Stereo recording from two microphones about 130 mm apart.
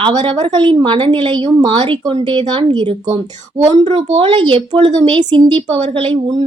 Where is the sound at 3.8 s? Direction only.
55° right (ahead or behind).